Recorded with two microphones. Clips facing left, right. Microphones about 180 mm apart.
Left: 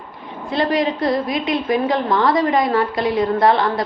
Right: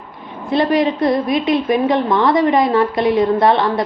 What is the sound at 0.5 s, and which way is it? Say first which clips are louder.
A woman's voice: right 4 dB; 25° right (ahead or behind).